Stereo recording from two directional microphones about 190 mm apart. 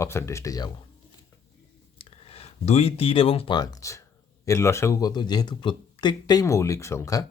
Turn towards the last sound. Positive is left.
turn(degrees=15)  # may be behind; listen again after turning